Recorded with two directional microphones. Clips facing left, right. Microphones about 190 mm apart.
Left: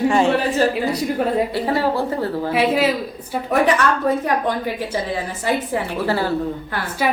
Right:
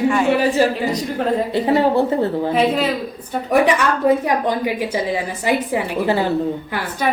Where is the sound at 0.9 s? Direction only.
10° left (ahead or behind).